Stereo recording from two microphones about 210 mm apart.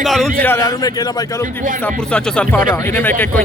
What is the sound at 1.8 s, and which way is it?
A man's voice, 5° left (ahead or behind).